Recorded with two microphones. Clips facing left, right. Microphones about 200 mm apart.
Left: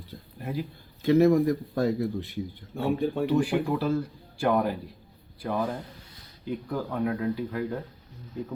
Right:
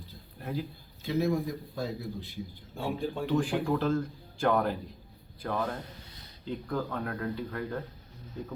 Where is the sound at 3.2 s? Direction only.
10° left (ahead or behind).